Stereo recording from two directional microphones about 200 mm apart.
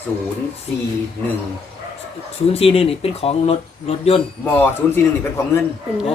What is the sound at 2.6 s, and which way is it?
Speech, 30° left (ahead or behind).